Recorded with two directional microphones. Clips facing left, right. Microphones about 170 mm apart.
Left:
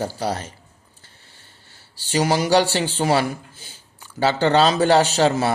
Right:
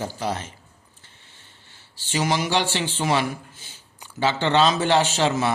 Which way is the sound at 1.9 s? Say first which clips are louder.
Left 4 dB; 40° left (ahead or behind).